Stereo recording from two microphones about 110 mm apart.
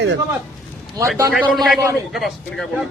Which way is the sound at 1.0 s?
30° right (ahead or behind).